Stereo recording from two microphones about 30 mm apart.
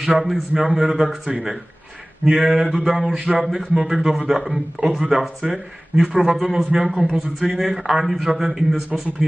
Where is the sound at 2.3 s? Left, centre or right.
Centre.